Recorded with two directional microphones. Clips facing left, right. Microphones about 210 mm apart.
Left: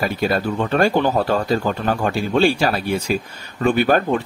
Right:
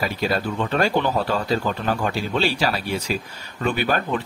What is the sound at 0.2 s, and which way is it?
A man's voice, 50° left (ahead or behind).